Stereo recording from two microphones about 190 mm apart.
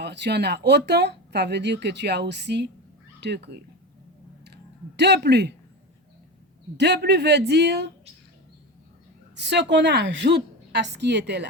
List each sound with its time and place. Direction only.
0.0 s speech: 65° right (ahead or behind)
4.9 s speech: 60° right (ahead or behind)
6.7 s speech: 65° right (ahead or behind)
9.3 s speech: 65° right (ahead or behind)